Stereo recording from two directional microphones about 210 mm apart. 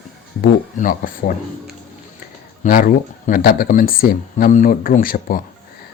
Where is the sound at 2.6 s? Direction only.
40° left (ahead or behind).